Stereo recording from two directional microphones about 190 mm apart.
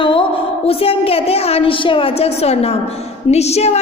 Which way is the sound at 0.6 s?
30° left (ahead or behind).